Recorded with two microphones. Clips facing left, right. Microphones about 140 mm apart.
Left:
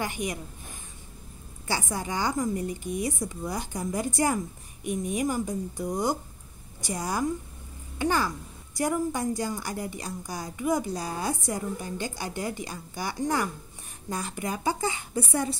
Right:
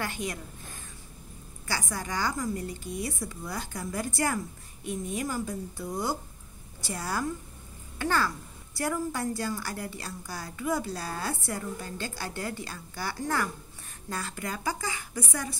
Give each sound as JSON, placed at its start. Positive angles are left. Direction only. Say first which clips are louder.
{"t": 0.0, "sound": "a woman's voice", "louder": "left 3 dB", "side_deg": 15}